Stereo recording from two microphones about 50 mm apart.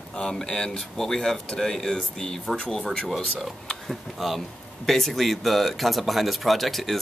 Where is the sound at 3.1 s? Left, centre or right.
Centre.